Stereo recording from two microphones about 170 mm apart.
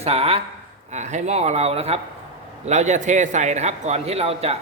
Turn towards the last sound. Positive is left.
turn(degrees=-35)  # may be behind; listen again after turning